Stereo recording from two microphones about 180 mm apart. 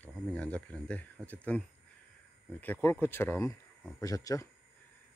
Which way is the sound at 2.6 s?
10° left (ahead or behind).